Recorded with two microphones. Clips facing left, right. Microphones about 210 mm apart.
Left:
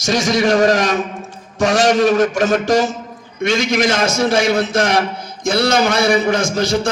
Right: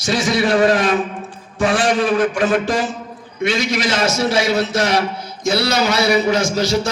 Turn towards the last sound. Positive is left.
turn(degrees=55)  # may be behind; listen again after turning